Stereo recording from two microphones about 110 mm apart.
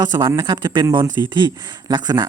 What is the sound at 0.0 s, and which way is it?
Speech, 45° right (ahead or behind).